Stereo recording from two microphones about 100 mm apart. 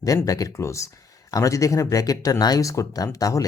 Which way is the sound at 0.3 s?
35° left (ahead or behind).